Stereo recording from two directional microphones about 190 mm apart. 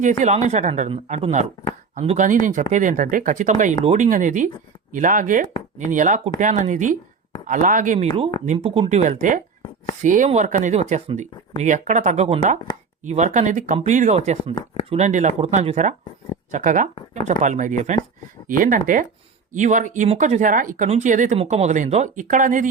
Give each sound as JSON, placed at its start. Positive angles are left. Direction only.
{"t": 0.0, "sound": "speech", "side_deg": -40}
{"t": 7.9, "sound": "speech", "side_deg": -30}